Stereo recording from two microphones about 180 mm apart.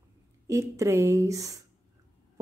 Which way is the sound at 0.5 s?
15° right (ahead or behind).